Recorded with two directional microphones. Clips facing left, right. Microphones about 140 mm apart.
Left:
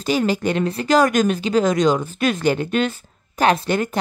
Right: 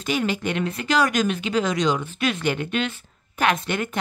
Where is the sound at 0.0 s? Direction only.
35° left (ahead or behind).